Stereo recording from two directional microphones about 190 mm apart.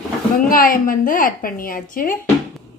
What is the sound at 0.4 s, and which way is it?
Speech, 50° left (ahead or behind).